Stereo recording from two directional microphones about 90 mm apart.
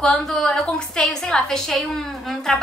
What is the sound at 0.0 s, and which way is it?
A woman's voice, 5° left (ahead or behind).